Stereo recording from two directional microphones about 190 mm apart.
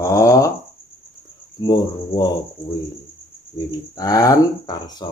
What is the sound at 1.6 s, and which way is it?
Speech, 20° left (ahead or behind).